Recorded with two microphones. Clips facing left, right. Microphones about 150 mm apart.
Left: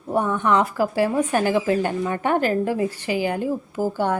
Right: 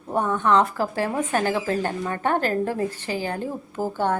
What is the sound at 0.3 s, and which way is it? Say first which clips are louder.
A woman's voice: right 2 dB; 15° left (ahead or behind).